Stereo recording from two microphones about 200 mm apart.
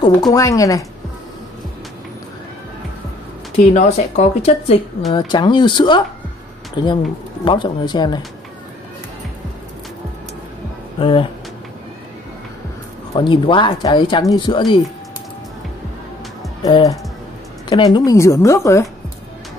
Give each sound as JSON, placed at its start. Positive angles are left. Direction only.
{"t": 0.0, "sound": "a woman's voice", "side_deg": 20}
{"t": 3.5, "sound": "speech", "side_deg": 35}
{"t": 11.0, "sound": "speech", "side_deg": 25}
{"t": 13.1, "sound": "speech", "side_deg": 25}
{"t": 16.6, "sound": "a woman's voice", "side_deg": 20}